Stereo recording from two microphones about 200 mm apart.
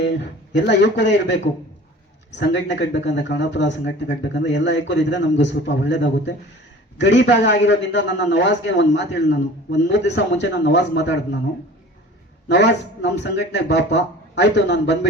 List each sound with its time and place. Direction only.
0.0 s a man's voice: 60° left (ahead or behind)
12.5 s a man's voice: 60° left (ahead or behind)